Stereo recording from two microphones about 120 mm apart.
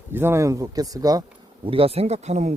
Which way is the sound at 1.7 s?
55° right (ahead or behind).